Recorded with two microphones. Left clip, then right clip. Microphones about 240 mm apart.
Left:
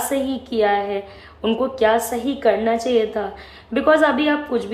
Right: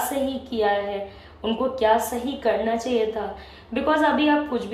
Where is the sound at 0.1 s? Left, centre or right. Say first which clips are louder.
Left 4 dB; centre.